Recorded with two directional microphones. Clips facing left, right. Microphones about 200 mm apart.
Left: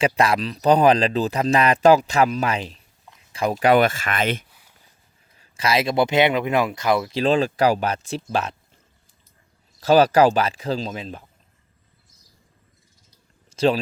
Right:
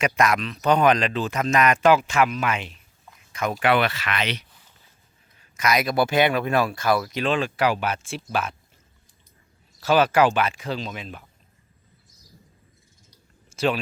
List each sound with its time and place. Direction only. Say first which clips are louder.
0.0 s speech: left 2 dB; 30° left (ahead or behind); by 4.4 s 50° left (ahead or behind)
5.4 s speech: left 1 dB; 30° left (ahead or behind)
7.2 s speech: left 4 dB; 40° left (ahead or behind)
9.8 s speech: left 4 dB; 35° left (ahead or behind)